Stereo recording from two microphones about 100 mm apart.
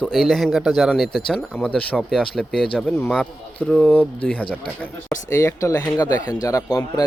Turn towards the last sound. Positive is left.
turn(degrees=35)  # may be behind; listen again after turning